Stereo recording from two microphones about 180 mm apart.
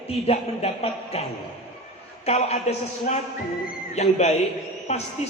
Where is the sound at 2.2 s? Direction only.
35° left (ahead or behind).